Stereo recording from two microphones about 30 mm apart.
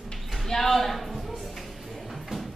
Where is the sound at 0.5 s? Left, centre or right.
Centre.